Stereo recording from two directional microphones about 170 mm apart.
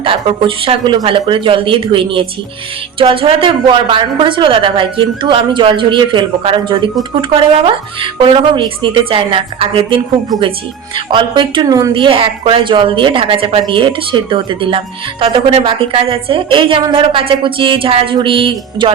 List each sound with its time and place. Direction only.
0.0 s a woman's voice: 30° right (ahead or behind)